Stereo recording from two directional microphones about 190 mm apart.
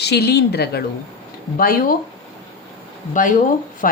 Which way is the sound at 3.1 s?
45° left (ahead or behind).